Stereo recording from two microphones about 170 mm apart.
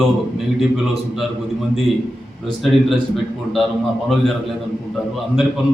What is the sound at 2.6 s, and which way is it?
A man's voice, centre (ahead or behind).